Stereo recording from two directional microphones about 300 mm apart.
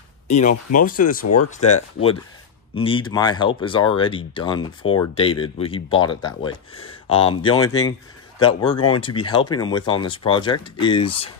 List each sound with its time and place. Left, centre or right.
0.3 s speech: left
1.2 s speech: left
1.5 s speech: left